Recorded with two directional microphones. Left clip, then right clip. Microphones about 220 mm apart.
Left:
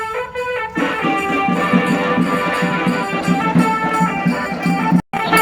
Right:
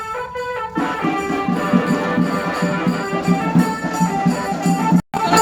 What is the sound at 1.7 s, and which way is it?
Music, 5° right (ahead or behind).